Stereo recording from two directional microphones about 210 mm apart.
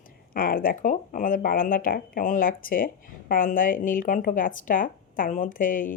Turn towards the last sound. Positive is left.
turn(degrees=40)  # may be behind; listen again after turning